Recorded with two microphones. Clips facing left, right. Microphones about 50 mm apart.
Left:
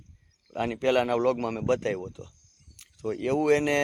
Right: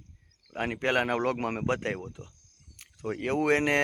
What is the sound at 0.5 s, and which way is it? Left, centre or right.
Speech, right.